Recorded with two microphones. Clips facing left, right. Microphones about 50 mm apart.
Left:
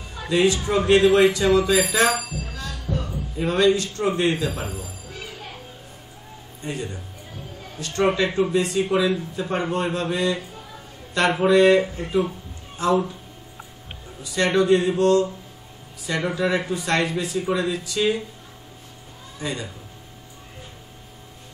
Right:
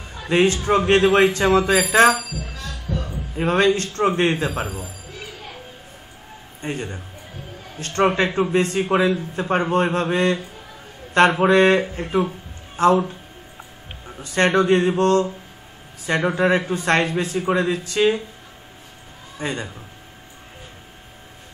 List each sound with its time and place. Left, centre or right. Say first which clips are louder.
0.3 s a man's voice: right 2 dB; right
2.9 s music: even; right
3.3 s a man's voice: right 1 dB; right
6.6 s a man's voice: right 2 dB; right
14.2 s a man's voice: right 2 dB; right
19.3 s a man's voice: right 3 dB; right